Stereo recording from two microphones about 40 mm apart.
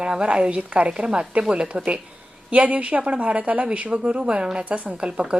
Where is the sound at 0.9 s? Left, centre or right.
Right.